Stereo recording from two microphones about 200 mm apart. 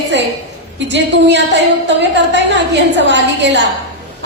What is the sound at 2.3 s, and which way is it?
A woman's voice, 65° right (ahead or behind).